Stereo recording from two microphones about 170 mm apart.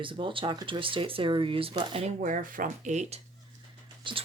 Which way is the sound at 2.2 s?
50° right (ahead or behind).